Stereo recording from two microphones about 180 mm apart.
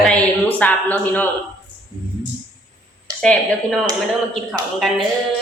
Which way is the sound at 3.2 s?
5° left (ahead or behind).